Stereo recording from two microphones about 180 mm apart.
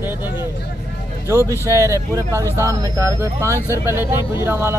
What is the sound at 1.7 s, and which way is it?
Speech, 15° right (ahead or behind).